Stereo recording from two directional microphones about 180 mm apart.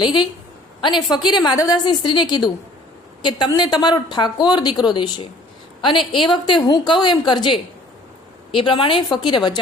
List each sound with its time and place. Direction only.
0.8 s a woman's voice: 25° left (ahead or behind)